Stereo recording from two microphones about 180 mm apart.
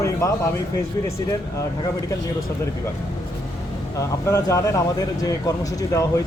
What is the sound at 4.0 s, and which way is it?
Speech, 15° left (ahead or behind).